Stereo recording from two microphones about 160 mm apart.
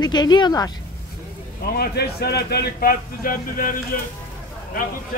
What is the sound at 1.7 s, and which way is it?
A man's voice, 75° left (ahead or behind).